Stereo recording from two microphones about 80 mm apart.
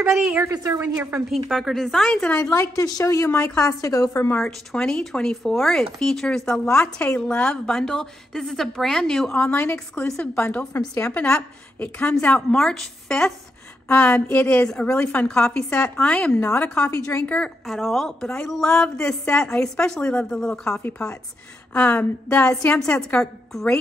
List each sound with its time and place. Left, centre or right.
0.1 s a woman's voice: centre
1.3 s a woman's voice: centre
2.5 s a woman's voice: left
4.4 s a woman's voice: centre
12.4 s a woman's voice: centre
14.3 s speech: left
14.8 s a woman's voice: centre
16.8 s a woman's voice: left
17.6 s a woman's voice: centre
21.7 s speech: centre
22.8 s a woman's voice: centre